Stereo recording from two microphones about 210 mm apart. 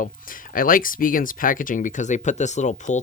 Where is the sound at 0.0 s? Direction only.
40° left (ahead or behind).